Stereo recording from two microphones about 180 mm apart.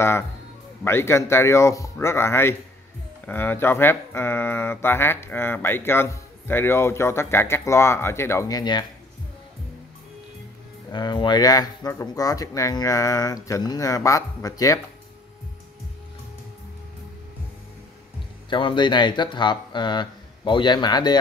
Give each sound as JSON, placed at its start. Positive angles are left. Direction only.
{"t": 0.8, "sound": "speech", "side_deg": 15}
{"t": 10.9, "sound": "speech", "side_deg": 25}
{"t": 18.5, "sound": "speech", "side_deg": 25}